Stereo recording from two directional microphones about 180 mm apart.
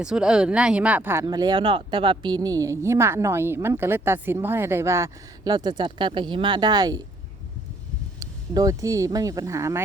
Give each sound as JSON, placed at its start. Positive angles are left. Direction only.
{"t": 0.0, "sound": "speech", "side_deg": -5}
{"t": 8.2, "sound": "speech", "side_deg": -20}